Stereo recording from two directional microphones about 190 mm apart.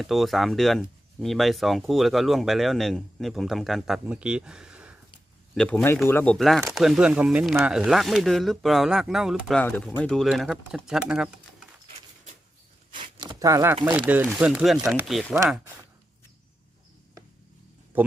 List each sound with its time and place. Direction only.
0.0 s speech: centre (ahead or behind)
5.5 s speech: 10° left (ahead or behind)
6.3 s speech: centre (ahead or behind)
12.9 s a sound: 25° right (ahead or behind)
14.1 s speech: 10° right (ahead or behind)
17.9 s a sound: 10° right (ahead or behind)